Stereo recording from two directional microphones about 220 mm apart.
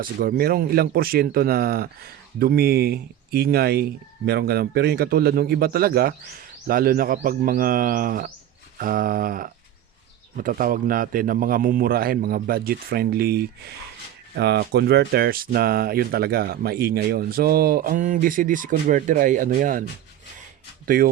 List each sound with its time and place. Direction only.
0.0 s a man's voice: 40° right (ahead or behind)
20.8 s speech: 40° right (ahead or behind)